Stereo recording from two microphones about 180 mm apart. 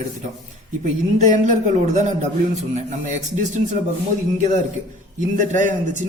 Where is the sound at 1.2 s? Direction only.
45° right (ahead or behind).